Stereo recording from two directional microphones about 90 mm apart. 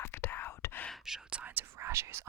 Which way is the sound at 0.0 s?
25° left (ahead or behind).